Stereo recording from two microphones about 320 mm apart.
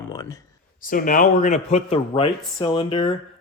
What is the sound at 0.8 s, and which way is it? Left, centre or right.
Speech, left.